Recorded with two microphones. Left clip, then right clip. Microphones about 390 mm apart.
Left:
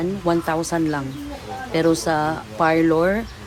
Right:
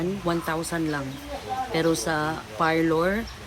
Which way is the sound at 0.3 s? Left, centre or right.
Centre.